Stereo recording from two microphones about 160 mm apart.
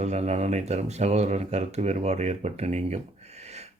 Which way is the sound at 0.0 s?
45° right (ahead or behind).